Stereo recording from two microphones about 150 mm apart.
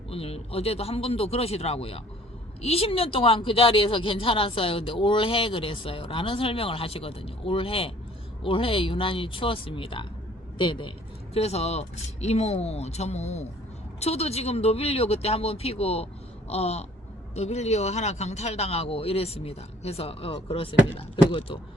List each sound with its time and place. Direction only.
0.1 s speech: 40° left (ahead or behind)
11.3 s speech: 45° left (ahead or behind)